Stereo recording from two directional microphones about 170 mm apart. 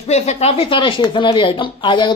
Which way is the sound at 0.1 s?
40° left (ahead or behind).